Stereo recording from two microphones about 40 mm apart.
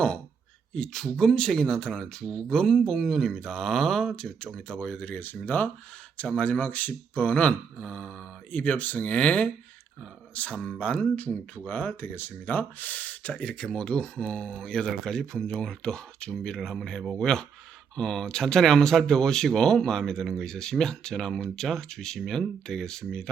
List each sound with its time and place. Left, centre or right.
0.7 s speech: centre
4.9 s speech: left
5.5 s speech: left
6.2 s speech: left
8.5 s speech: left
11.5 s speech: left
12.0 s speech: left
13.3 s speech: left
16.6 s speech: centre
17.2 s speech: centre